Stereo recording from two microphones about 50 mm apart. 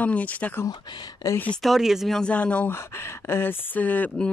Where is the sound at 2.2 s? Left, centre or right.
Left.